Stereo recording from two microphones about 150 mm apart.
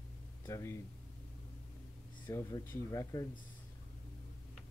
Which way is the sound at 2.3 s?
20° left (ahead or behind).